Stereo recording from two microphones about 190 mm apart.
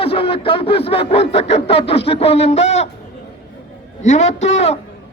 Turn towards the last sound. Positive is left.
turn(degrees=35)  # may be behind; listen again after turning